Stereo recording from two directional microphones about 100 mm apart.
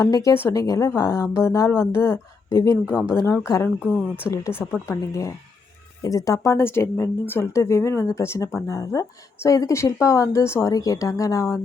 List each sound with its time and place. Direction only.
0.0 s a woman's voice: 35° left (ahead or behind)
2.8 s a woman's voice: 10° right (ahead or behind)
3.1 s speech: 25° left (ahead or behind)
3.8 s a woman's voice: 10° right (ahead or behind)
4.3 s speech: 25° left (ahead or behind)